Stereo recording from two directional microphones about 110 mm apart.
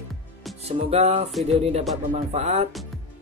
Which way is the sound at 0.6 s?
75° right (ahead or behind).